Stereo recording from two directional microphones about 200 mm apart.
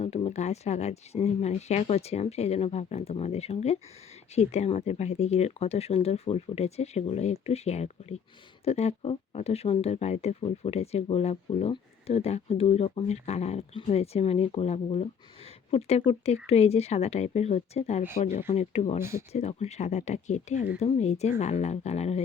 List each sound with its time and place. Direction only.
0.0 s speech: 30° left (ahead or behind)